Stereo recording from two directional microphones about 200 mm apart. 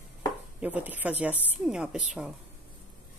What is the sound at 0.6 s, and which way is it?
A woman's voice, 10° right (ahead or behind).